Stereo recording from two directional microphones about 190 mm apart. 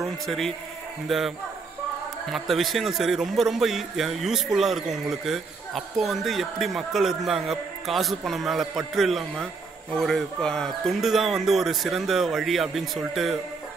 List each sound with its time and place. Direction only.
0.0 s a man's voice: centre (ahead or behind)